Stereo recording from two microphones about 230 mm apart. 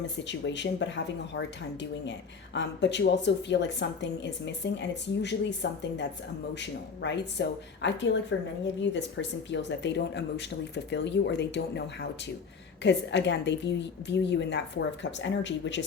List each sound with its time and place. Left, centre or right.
0.3 s speech: left